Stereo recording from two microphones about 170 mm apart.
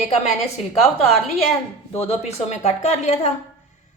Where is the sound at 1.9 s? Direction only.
40° left (ahead or behind).